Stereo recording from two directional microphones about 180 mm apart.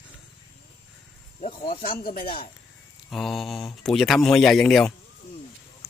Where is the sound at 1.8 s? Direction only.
55° left (ahead or behind).